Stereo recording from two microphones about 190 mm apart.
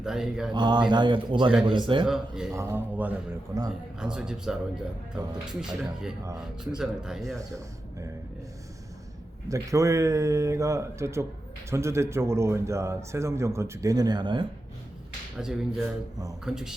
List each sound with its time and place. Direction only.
0.0 s speech: 5° right (ahead or behind)
0.5 s speech: 25° right (ahead or behind)
2.0 s speech: centre (ahead or behind)
2.5 s a man's voice: 15° right (ahead or behind)
9.5 s a man's voice: 15° right (ahead or behind)
15.4 s speech: 5° right (ahead or behind)